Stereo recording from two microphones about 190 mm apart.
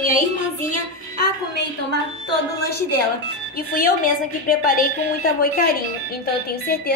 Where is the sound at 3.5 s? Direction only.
50° left (ahead or behind).